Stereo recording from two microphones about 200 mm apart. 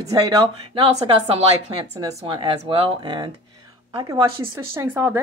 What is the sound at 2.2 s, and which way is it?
Speech, 25° right (ahead or behind).